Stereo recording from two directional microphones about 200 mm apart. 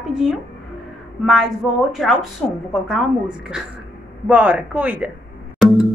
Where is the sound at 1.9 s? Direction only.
Centre (ahead or behind).